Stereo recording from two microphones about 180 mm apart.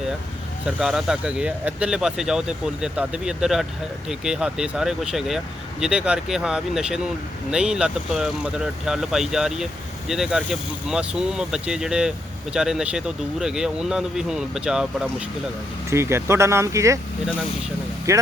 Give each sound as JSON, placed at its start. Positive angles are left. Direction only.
{"t": 0.6, "sound": "speech", "side_deg": -5}
{"t": 15.9, "sound": "speech", "side_deg": -15}
{"t": 18.1, "sound": "speech", "side_deg": -15}